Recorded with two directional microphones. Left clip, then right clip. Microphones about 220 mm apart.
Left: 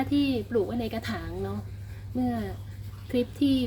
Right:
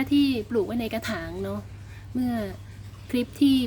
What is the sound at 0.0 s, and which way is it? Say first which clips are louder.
A woman's voice: right 3 dB; 20° right (ahead or behind).